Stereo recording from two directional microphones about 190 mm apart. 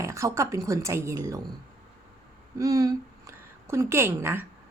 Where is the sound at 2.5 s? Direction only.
20° right (ahead or behind).